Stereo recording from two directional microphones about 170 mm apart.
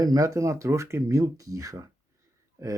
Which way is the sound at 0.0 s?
20° right (ahead or behind).